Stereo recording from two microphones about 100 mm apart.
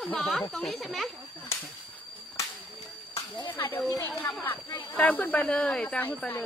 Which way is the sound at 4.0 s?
20° left (ahead or behind).